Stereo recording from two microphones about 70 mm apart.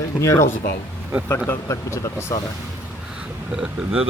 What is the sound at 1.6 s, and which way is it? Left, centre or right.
Speech, left.